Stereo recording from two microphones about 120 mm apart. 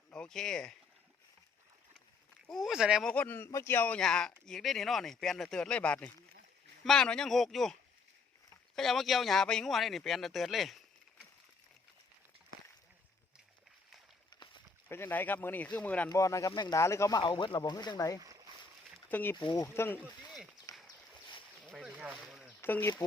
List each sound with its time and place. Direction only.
0.1 s speech: 5° left (ahead or behind)
2.5 s speech: centre (ahead or behind)
3.0 s a man's voice: 10° left (ahead or behind)
14.8 s a man's voice: 20° left (ahead or behind)
16.0 s speech: 25° left (ahead or behind)
16.5 s speech: 40° left (ahead or behind)
16.7 s speech: 25° left (ahead or behind)
17.2 s speech: 40° left (ahead or behind)
18.2 s a sound: 30° right (ahead or behind)
19.0 s speech: 15° left (ahead or behind)
20.3 s a sound: 5° right (ahead or behind)
21.8 s a sound: 10° right (ahead or behind)
22.6 s speech: 20° left (ahead or behind)